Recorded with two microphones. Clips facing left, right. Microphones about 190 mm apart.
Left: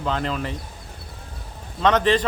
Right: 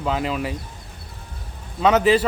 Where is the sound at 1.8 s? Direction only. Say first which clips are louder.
Right 2 dB; 10° right (ahead or behind).